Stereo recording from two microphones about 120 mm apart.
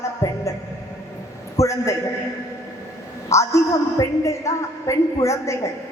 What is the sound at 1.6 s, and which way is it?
Speech, 25° left (ahead or behind).